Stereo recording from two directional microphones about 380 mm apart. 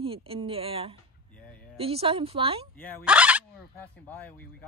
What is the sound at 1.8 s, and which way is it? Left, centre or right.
Speech, centre.